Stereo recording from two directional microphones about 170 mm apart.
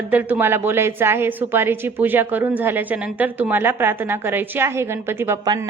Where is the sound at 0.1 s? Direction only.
10° right (ahead or behind).